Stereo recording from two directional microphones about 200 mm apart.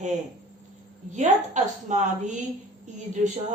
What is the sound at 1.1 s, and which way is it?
A woman's voice, 35° right (ahead or behind).